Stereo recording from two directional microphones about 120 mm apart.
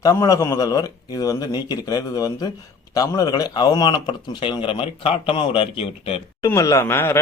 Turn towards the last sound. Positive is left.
turn(degrees=20)  # may be behind; listen again after turning